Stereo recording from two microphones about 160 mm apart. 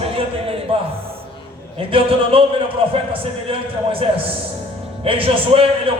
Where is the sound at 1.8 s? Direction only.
35° right (ahead or behind).